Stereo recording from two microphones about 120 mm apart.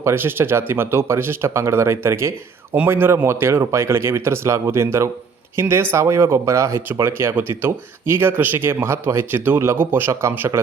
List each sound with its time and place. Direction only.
0.0 s speech: 20° right (ahead or behind)